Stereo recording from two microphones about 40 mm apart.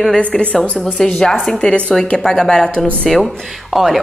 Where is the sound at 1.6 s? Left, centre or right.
Left.